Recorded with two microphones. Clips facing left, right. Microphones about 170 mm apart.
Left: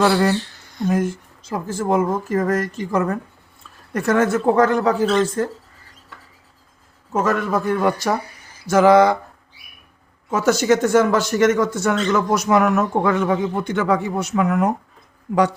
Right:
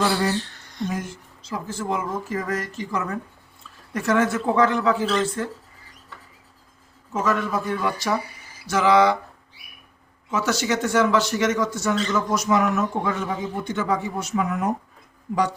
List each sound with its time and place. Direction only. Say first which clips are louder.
0.9 s speech: left 12 dB; 55° left (ahead or behind)
7.1 s speech: left 4 dB; 50° left (ahead or behind)
10.2 s a man's voice: left 7 dB; 50° left (ahead or behind); by 14.7 s 65° left (ahead or behind)